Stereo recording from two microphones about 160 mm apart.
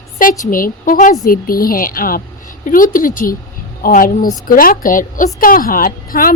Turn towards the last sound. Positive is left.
turn(degrees=60)  # may be behind; listen again after turning